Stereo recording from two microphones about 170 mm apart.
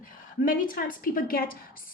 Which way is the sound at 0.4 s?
55° left (ahead or behind).